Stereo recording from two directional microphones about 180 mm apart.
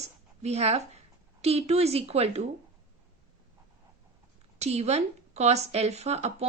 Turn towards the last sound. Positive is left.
turn(degrees=-35)  # may be behind; listen again after turning